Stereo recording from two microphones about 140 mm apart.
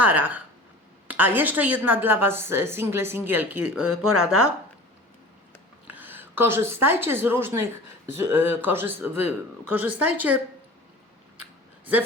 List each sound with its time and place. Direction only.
0.0 s a woman's voice: 10° right (ahead or behind)
5.9 s a woman's voice: 15° right (ahead or behind)